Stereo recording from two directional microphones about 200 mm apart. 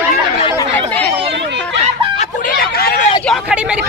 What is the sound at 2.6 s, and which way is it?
Hubbub, 50° left (ahead or behind).